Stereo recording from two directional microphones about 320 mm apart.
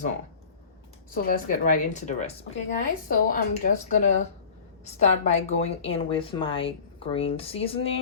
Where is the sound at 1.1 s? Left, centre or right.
Left.